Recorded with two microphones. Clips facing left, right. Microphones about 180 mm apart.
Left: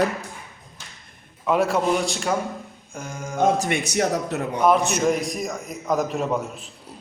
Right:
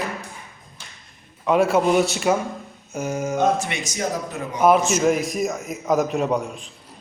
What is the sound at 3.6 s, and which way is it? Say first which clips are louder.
Speech: left 4 dB; 55° left (ahead or behind).